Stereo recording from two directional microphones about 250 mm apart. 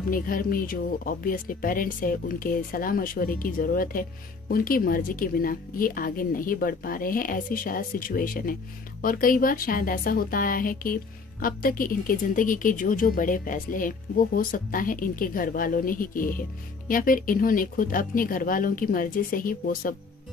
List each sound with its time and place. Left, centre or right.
0.1 s a woman's voice: left